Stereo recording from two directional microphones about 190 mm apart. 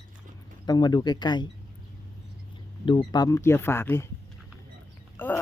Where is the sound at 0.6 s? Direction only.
20° left (ahead or behind).